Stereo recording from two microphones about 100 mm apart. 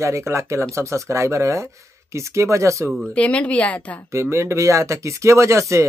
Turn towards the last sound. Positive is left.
turn(degrees=-30)  # may be behind; listen again after turning